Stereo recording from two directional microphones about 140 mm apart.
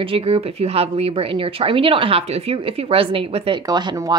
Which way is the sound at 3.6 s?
30° right (ahead or behind).